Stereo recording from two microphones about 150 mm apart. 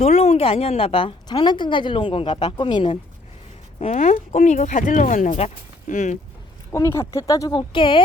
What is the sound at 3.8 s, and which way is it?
Speech, 50° left (ahead or behind).